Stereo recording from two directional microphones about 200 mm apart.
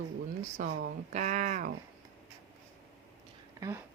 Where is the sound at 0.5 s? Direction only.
45° right (ahead or behind).